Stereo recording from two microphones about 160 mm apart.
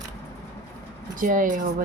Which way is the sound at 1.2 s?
55° right (ahead or behind).